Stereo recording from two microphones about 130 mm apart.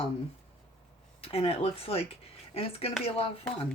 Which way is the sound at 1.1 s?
45° left (ahead or behind).